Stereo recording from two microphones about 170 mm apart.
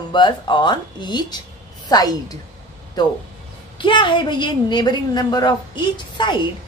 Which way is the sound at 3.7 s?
30° left (ahead or behind).